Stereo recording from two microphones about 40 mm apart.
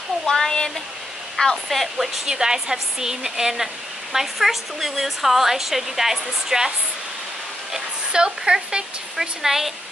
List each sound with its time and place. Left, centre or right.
0.3 s a sound: centre
1.7 s speech: centre
2.2 s speech: centre
8.1 s speech: right
9.1 s speech: centre